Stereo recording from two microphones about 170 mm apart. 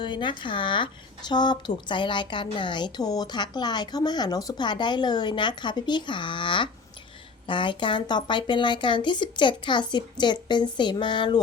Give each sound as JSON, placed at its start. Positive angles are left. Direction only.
{"t": 0.0, "sound": "a woman's voice", "side_deg": 30}